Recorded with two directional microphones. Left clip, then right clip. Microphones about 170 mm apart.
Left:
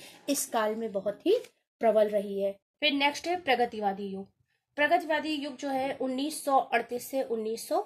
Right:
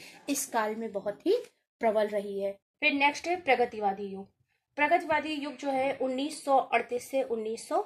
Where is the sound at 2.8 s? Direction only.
60° left (ahead or behind).